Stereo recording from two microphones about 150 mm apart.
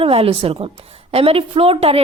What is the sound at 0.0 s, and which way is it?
A woman's voice, 40° right (ahead or behind).